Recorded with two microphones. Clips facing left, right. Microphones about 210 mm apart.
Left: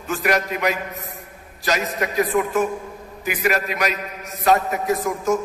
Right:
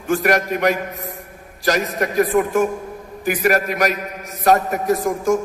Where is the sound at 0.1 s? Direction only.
45° right (ahead or behind).